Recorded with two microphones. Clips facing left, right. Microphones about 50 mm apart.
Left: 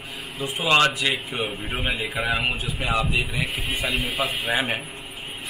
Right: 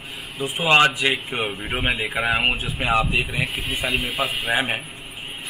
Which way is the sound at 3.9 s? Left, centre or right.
Centre.